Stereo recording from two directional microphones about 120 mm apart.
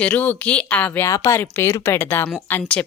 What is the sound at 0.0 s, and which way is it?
A woman's voice, 15° left (ahead or behind).